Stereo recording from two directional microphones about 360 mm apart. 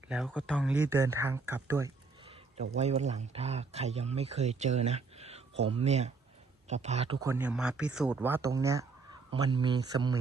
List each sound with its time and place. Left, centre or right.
0.1 s speech: centre
2.6 s speech: centre